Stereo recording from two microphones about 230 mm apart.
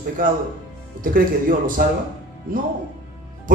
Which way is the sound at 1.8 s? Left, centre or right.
Right.